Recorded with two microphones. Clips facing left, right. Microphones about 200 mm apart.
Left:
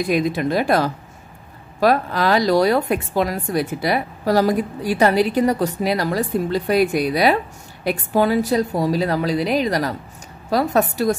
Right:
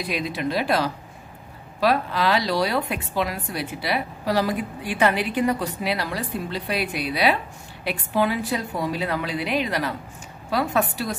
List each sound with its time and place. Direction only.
0.0 s a woman's voice: 45° left (ahead or behind)